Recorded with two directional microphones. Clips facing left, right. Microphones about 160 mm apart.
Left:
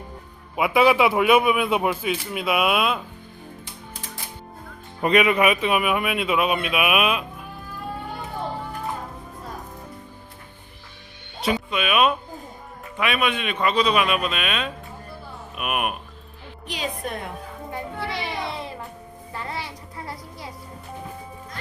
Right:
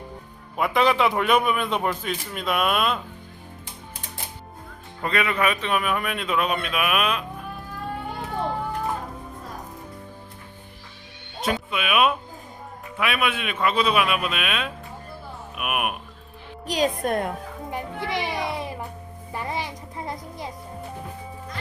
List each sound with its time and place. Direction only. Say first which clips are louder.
0.5 s a man's voice: left 3 dB; 5° left (ahead or behind)
4.9 s a man's voice: left 6 dB; 20° left (ahead or behind)
11.3 s a man's voice: left 2 dB; centre (ahead or behind)
16.6 s a woman's voice: right 7 dB; 45° right (ahead or behind)
17.7 s music: right 1 dB; 15° right (ahead or behind)